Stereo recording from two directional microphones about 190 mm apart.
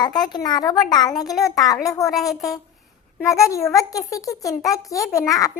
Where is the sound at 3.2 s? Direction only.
15° left (ahead or behind).